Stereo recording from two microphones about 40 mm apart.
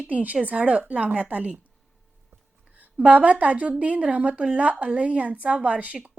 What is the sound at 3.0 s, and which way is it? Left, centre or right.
A woman's voice, right.